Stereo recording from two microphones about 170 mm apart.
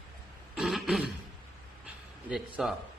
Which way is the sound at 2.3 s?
Centre (ahead or behind).